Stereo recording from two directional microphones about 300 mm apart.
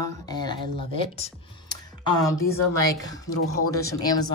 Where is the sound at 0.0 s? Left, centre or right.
Centre.